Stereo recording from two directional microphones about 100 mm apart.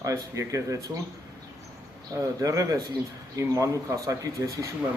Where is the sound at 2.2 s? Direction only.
35° right (ahead or behind).